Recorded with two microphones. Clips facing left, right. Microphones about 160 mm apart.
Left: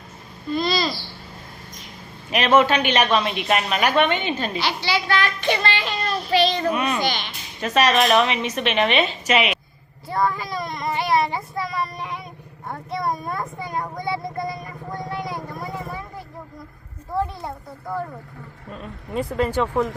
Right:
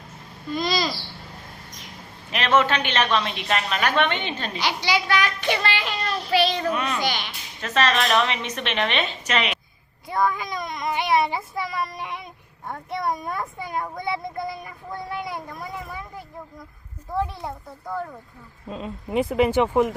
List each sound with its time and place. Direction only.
0.5 s babbling: 15° right (ahead or behind)
2.3 s a woman's voice: 10° left (ahead or behind)
4.6 s a child's voice: 15° right (ahead or behind)
6.3 s child singing: 10° right (ahead or behind)
6.7 s a woman's voice: 10° left (ahead or behind)
7.0 s a child's voice: 10° right (ahead or behind)
7.6 s a woman's voice: 10° left (ahead or behind)
10.1 s child singing: centre (ahead or behind)
18.7 s a child's voice: 20° right (ahead or behind)